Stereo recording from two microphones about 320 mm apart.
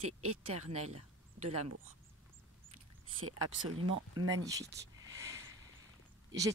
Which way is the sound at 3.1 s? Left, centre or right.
Right.